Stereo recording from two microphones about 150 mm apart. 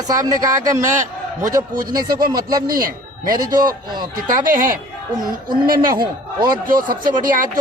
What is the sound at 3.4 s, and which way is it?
Speech, 25° right (ahead or behind).